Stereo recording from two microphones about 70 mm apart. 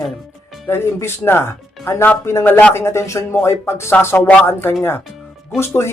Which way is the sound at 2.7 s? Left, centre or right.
Left.